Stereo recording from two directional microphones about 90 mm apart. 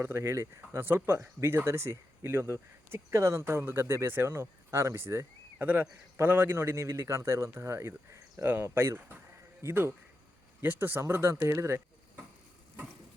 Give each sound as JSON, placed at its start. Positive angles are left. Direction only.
{"t": 0.0, "sound": "a man's voice", "side_deg": -30}